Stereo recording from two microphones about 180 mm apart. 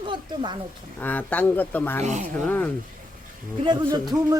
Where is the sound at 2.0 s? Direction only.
40° right (ahead or behind).